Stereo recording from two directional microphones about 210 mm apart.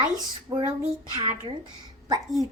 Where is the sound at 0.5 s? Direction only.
20° right (ahead or behind).